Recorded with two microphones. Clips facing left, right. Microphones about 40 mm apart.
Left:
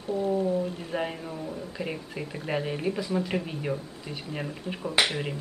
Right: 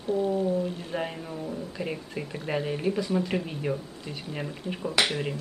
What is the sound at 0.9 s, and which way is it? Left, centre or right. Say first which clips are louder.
Speech: left 3 dB; centre.